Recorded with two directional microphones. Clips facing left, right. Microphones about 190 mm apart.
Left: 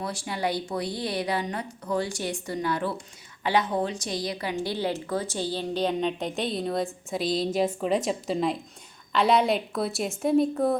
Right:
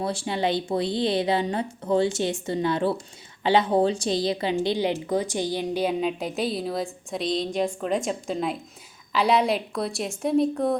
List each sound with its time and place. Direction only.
0.0 s a woman's voice: 25° right (ahead or behind); by 10.8 s centre (ahead or behind)